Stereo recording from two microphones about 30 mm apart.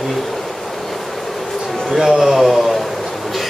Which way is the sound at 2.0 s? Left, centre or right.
Centre.